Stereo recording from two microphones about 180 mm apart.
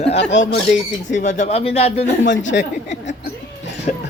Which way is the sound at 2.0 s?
90° left.